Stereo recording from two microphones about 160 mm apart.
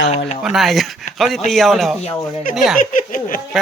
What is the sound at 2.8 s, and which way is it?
Speech, 55° left (ahead or behind).